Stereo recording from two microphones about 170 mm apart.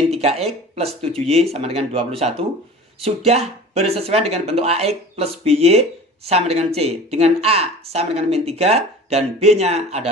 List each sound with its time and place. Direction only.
0.1 s speech: 40° right (ahead or behind)